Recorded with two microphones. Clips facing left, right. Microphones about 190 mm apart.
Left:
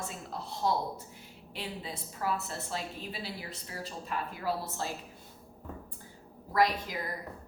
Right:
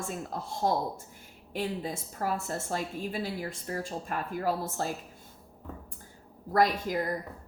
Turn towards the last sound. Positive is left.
turn(degrees=-45)  # may be behind; listen again after turning